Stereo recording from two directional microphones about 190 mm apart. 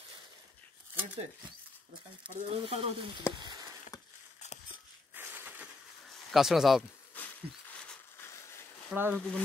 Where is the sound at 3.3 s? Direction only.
25° right (ahead or behind).